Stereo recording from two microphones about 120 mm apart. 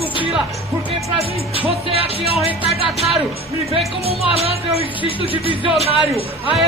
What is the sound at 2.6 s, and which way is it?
Music, 55° right (ahead or behind).